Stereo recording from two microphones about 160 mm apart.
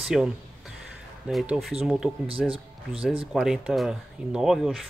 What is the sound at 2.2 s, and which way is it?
Speech, 35° right (ahead or behind).